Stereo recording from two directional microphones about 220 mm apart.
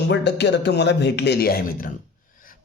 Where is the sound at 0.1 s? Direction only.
50° left (ahead or behind).